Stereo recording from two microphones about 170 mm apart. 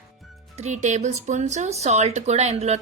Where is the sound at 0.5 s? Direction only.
45° right (ahead or behind).